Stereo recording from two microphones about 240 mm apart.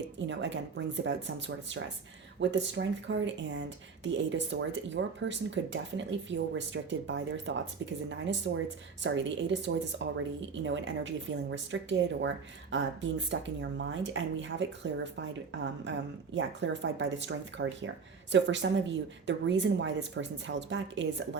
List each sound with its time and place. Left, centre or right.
0.3 s a woman's voice: right